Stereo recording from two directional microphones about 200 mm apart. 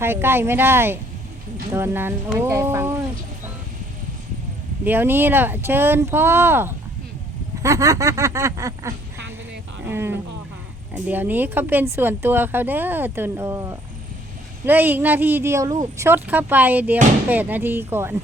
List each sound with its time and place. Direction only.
0.0 s speech: 10° right (ahead or behind)
4.9 s speech: 10° right (ahead or behind)